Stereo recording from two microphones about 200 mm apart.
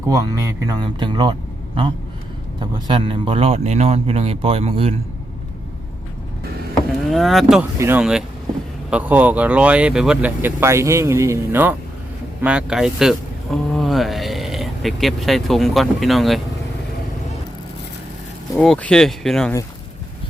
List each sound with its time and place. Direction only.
0.1 s speech: 20° right (ahead or behind)
7.1 s speech: centre (ahead or behind)
18.5 s speech: 5° left (ahead or behind)